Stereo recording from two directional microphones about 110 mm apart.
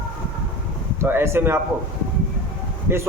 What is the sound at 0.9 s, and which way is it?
Speech, 20° right (ahead or behind).